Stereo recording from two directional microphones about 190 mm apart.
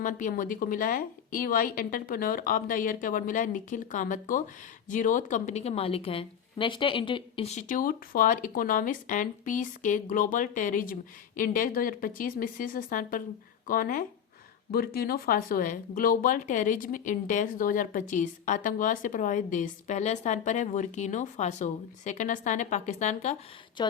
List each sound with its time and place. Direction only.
0.0 s speech: 45° left (ahead or behind)